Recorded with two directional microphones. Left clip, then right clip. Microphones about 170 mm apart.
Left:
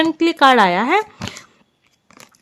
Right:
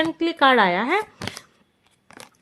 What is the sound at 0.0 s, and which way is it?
Speech, 40° left (ahead or behind).